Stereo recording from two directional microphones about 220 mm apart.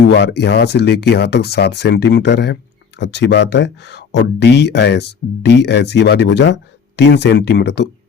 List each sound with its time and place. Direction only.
0.1 s speech: 50° left (ahead or behind)